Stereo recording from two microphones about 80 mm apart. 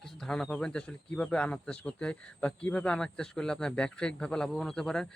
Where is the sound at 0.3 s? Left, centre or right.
Centre.